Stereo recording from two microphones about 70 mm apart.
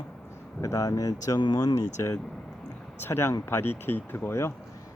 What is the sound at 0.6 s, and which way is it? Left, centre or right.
Speech, left.